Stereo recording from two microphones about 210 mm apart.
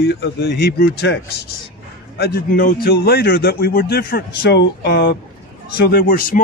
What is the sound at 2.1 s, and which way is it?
Speech, 45° left (ahead or behind).